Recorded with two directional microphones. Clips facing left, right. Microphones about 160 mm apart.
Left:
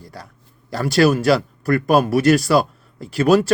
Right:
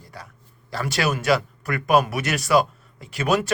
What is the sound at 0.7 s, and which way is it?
Speech, 40° left (ahead or behind).